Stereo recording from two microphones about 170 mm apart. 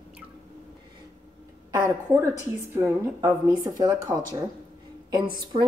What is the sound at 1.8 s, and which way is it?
A woman's voice, 15° right (ahead or behind).